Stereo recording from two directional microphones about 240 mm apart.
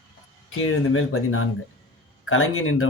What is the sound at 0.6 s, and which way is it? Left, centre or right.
Speech, left.